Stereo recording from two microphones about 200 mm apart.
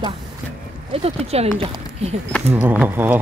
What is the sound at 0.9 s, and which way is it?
Speech, 30° right (ahead or behind).